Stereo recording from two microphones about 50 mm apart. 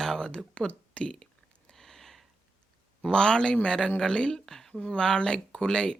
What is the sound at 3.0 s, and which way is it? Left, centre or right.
A woman's voice, centre.